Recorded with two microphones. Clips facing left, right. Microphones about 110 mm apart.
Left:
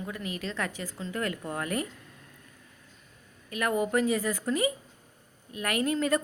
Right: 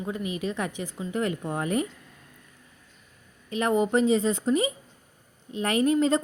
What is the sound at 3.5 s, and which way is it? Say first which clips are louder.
Speech: right 4 dB; 25° right (ahead or behind).